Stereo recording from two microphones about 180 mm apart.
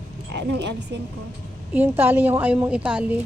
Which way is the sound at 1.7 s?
10° right (ahead or behind).